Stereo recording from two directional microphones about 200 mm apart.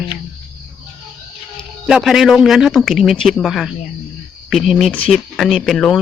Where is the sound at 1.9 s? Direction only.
Centre (ahead or behind).